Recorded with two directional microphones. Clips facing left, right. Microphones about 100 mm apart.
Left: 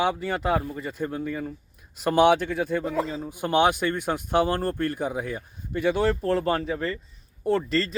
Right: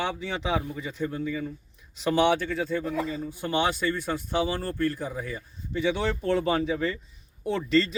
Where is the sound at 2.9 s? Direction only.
90° left.